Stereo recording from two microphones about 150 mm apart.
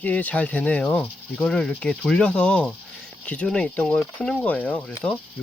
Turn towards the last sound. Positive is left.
turn(degrees=5)  # may be behind; listen again after turning